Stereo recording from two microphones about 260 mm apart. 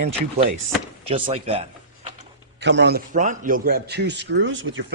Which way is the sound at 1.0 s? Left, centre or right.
Right.